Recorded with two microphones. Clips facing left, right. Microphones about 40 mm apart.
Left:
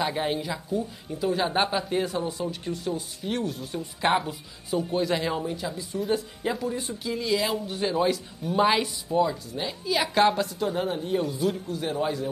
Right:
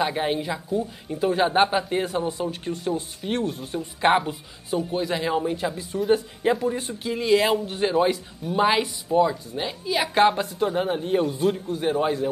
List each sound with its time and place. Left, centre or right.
0.0 s a woman's voice: centre
2.0 s speech: right
4.7 s a woman's voice: centre
5.4 s speech: right
7.9 s a woman's voice: right
11.0 s speech: right